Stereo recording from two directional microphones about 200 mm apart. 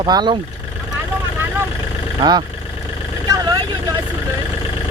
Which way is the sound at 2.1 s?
20° right (ahead or behind).